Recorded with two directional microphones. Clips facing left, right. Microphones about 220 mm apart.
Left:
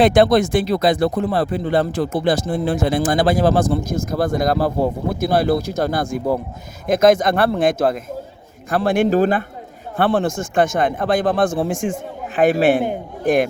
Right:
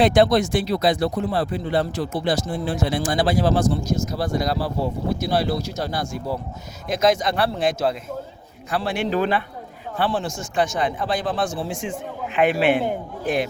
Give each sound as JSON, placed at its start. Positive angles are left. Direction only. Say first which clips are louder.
{"t": 0.0, "sound": "speech", "louder": "left 3 dB", "side_deg": 55}
{"t": 10.0, "sound": "speech", "louder": "left 6 dB", "side_deg": 55}